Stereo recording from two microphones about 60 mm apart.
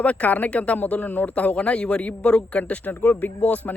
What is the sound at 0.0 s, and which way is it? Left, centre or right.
A man's voice, left.